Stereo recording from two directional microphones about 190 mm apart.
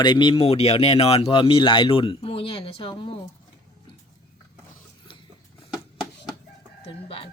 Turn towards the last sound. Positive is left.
turn(degrees=30)  # may be behind; listen again after turning